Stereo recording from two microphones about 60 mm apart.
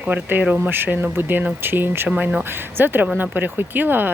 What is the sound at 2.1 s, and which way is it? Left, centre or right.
Speech, centre.